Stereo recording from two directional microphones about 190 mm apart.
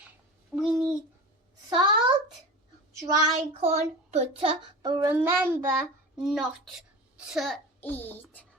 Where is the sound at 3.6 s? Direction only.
35° right (ahead or behind); by 5.5 s 10° right (ahead or behind).